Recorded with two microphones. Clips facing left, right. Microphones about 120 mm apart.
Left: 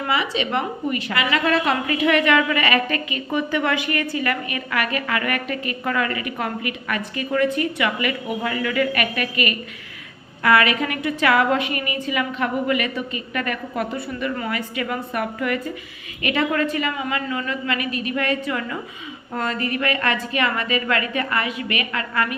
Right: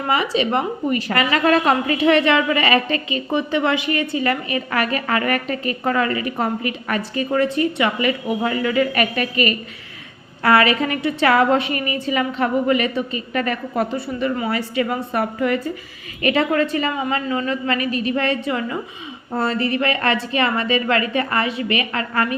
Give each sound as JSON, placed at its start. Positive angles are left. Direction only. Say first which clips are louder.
{"t": 0.1, "sound": "a woman's voice", "louder": "right 4 dB", "side_deg": -40}
{"t": 2.0, "sound": "a woman's voice", "louder": "even", "side_deg": -30}